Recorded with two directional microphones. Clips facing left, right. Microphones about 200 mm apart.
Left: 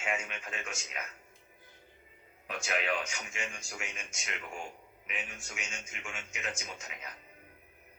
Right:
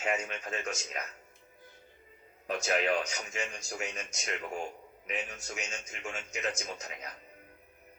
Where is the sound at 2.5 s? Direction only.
40° right (ahead or behind).